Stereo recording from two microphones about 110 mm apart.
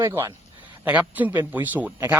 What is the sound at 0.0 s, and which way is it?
A man's voice, 20° right (ahead or behind).